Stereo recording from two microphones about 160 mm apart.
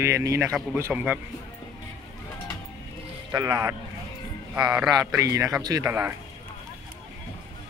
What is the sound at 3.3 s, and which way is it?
Speech, 15° right (ahead or behind).